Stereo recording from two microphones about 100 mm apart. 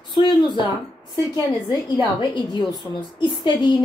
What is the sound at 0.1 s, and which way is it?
A woman's voice, 50° left (ahead or behind).